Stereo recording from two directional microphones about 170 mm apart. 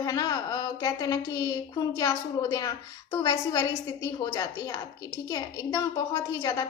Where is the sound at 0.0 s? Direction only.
20° left (ahead or behind).